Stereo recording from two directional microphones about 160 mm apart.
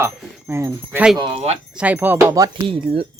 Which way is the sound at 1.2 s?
25° right (ahead or behind).